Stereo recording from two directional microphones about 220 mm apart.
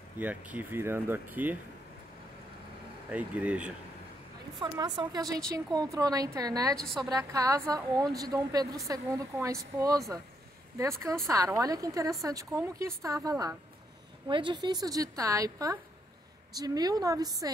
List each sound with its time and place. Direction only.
0.2 s a woman's voice: 5° right (ahead or behind)
3.1 s speech: 5° right (ahead or behind)
4.6 s a woman's voice: 20° right (ahead or behind)
6.8 s speech: centre (ahead or behind)
7.1 s a woman's voice: 15° right (ahead or behind)